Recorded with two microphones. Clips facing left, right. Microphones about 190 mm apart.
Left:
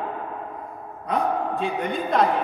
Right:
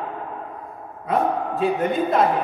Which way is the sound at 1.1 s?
5° right (ahead or behind).